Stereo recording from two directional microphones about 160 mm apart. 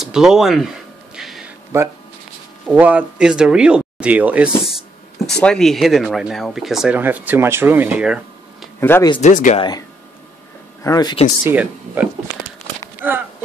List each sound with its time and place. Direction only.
0.0 s speech: 5° right (ahead or behind)
1.1 s a sound: 5° right (ahead or behind)
1.7 s speech: 15° right (ahead or behind)
8.7 s speech: 15° left (ahead or behind)
9.2 s speech: 50° left (ahead or behind)
9.6 s speech: 25° left (ahead or behind)
11.4 s speech: 10° right (ahead or behind)